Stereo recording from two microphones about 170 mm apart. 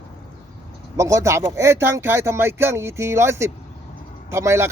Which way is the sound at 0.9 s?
20° right (ahead or behind).